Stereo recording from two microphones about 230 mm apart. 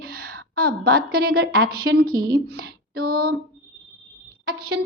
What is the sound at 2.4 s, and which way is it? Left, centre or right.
Female singing, right.